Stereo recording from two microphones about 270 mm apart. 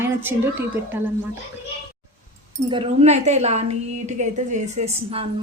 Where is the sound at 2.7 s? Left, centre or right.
Centre.